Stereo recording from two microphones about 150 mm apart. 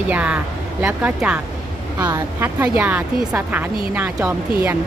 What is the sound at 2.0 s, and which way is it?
Speech, 20° right (ahead or behind).